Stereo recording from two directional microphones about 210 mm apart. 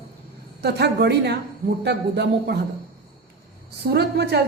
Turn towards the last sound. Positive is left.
turn(degrees=-50)  # may be behind; listen again after turning